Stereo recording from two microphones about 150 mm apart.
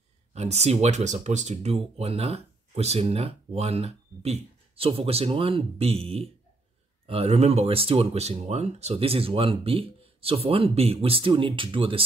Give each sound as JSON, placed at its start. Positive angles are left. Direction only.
{"t": 0.3, "sound": "speech", "side_deg": -45}